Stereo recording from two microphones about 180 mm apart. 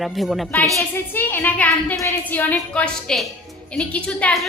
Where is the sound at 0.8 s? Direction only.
10° left (ahead or behind).